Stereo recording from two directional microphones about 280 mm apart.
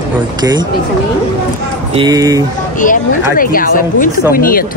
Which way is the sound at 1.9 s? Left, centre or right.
Centre.